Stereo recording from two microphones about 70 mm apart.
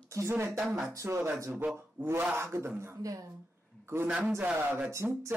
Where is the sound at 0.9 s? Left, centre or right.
Right.